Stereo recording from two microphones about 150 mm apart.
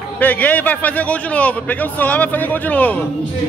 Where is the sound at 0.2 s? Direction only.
10° left (ahead or behind).